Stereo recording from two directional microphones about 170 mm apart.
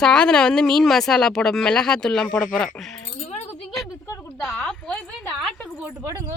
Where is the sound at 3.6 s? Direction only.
Centre (ahead or behind).